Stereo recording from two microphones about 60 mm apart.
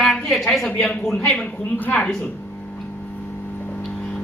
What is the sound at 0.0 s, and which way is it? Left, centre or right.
A woman's voice, centre.